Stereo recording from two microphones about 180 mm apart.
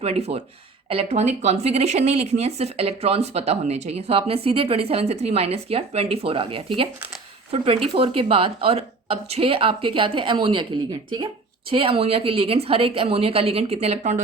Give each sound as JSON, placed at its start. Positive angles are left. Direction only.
{"t": 0.0, "sound": "speech", "side_deg": -35}
{"t": 11.7, "sound": "speech", "side_deg": -30}